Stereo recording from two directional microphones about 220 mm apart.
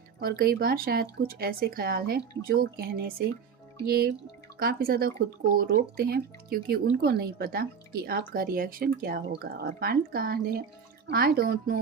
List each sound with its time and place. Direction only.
0.2 s speech: 45° right (ahead or behind)